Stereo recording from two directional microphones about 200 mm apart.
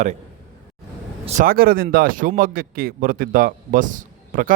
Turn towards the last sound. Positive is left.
turn(degrees=-40)  # may be behind; listen again after turning